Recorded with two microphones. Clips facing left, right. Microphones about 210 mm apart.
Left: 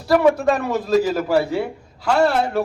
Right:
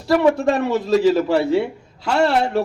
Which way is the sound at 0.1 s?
25° right (ahead or behind).